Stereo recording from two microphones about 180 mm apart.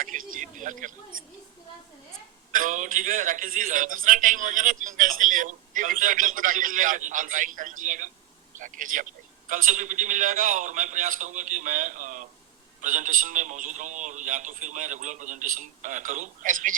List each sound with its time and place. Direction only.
0.0 s a man's voice: 50° right (ahead or behind)
2.5 s a man's voice: 45° right (ahead or behind)